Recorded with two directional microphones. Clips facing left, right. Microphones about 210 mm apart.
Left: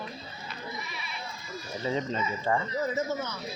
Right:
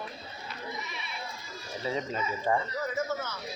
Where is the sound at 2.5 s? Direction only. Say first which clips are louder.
Even; 15° right (ahead or behind).